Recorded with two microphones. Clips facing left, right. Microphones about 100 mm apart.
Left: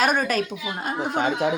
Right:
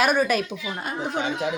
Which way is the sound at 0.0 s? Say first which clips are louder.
Right 1 dB; 40° left (ahead or behind).